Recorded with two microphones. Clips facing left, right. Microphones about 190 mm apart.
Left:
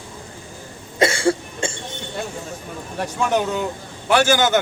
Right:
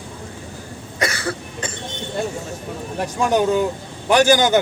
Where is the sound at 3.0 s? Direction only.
15° right (ahead or behind).